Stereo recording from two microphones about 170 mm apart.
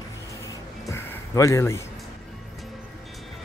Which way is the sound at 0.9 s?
15° left (ahead or behind).